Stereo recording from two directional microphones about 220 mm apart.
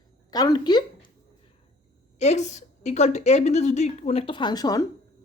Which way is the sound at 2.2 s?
30° left (ahead or behind).